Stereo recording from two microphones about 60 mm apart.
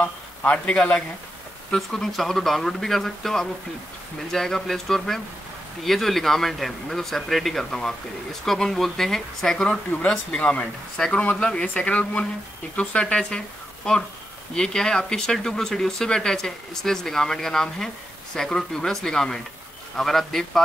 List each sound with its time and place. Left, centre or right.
0.0 s a man's voice: left
1.8 s speech: centre
9.7 s speech: left
14.5 s speech: centre